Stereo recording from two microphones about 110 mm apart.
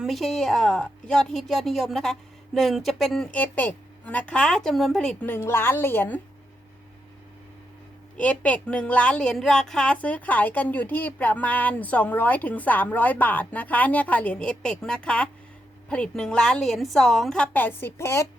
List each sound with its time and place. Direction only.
0.0 s a woman's voice: centre (ahead or behind)
3.3 s a woman's voice: 15° left (ahead or behind)
5.2 s a woman's voice: 20° left (ahead or behind)
8.1 s a woman's voice: 15° left (ahead or behind)